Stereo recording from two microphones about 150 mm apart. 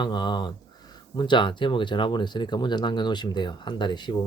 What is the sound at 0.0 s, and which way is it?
Speech, 30° left (ahead or behind).